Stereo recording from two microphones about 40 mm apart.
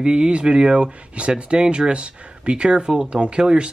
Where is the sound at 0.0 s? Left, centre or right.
Right.